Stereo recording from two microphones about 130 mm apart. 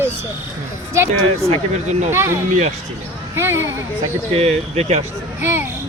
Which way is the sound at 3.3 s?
20° right (ahead or behind).